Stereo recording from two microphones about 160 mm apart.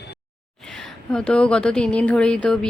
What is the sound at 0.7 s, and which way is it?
Speech, 5° left (ahead or behind).